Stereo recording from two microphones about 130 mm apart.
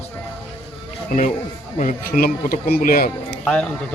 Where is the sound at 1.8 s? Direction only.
80° left.